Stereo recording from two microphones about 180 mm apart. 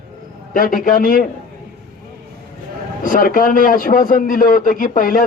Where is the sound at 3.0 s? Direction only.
50° left (ahead or behind).